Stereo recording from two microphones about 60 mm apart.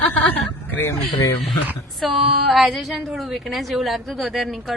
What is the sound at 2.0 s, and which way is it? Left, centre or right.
Speech, centre.